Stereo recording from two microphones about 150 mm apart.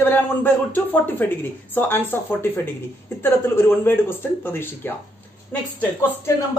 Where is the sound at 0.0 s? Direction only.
10° left (ahead or behind).